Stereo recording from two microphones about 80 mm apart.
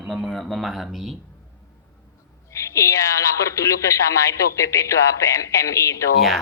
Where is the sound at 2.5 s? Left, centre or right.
Left.